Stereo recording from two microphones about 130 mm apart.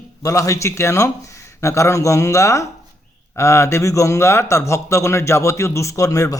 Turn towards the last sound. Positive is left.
turn(degrees=25)  # may be behind; listen again after turning